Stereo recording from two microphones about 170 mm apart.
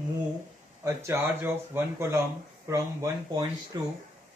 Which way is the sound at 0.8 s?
15° right (ahead or behind).